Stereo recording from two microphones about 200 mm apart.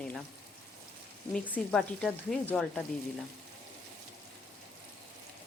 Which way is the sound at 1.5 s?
5° left (ahead or behind).